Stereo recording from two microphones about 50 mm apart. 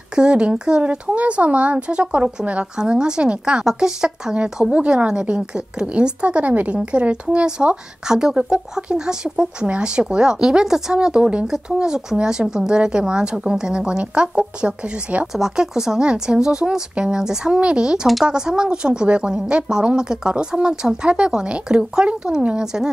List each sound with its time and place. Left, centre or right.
0.1 s a woman's voice: centre
15.3 s a woman's voice: centre